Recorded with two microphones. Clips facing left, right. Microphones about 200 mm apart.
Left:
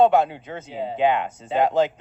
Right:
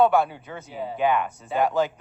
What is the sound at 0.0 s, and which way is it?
Speech, 20° left (ahead or behind).